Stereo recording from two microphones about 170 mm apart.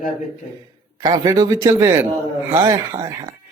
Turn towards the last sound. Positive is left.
turn(degrees=-20)  # may be behind; listen again after turning